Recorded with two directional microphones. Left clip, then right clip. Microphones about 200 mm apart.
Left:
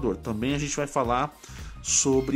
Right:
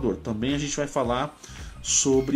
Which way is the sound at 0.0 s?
35° left (ahead or behind).